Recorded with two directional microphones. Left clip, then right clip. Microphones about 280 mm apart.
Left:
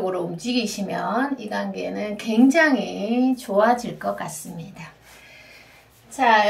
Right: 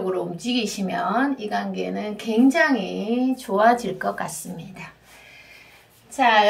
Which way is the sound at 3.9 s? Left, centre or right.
Centre.